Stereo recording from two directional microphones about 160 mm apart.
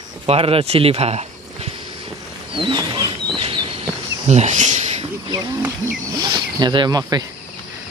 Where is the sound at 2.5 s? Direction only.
30° right (ahead or behind).